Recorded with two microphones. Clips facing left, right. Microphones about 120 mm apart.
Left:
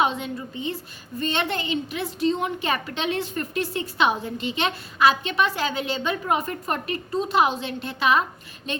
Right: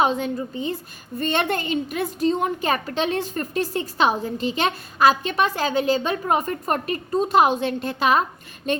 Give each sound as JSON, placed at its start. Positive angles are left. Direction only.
{"t": 0.0, "sound": "a woman's voice", "side_deg": -35}
{"t": 1.2, "sound": "a woman's voice", "side_deg": -50}